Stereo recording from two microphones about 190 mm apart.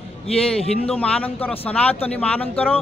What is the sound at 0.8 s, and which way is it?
A man's voice, 5° left (ahead or behind).